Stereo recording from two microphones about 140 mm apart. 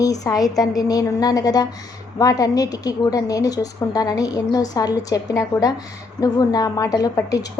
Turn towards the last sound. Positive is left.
turn(degrees=25)  # may be behind; listen again after turning